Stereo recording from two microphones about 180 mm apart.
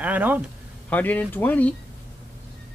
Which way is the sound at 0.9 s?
10° left (ahead or behind).